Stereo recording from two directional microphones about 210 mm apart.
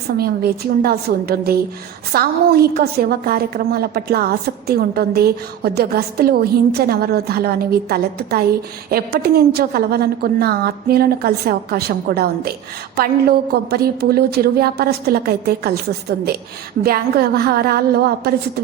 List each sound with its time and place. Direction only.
0.2 s a woman's voice: 45° right (ahead or behind)